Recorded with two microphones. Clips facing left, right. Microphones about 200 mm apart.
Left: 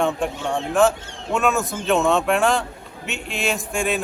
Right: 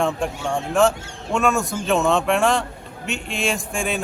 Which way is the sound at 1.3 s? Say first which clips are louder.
Right 1 dB; centre (ahead or behind).